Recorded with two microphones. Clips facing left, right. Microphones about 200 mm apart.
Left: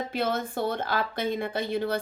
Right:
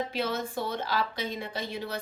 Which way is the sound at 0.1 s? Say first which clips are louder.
Left 3 dB; 55° left (ahead or behind).